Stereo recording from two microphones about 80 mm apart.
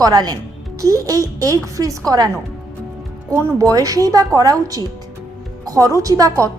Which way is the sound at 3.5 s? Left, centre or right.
Right.